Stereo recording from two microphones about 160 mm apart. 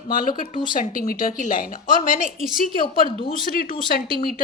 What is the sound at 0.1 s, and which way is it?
A woman's voice, 60° left (ahead or behind).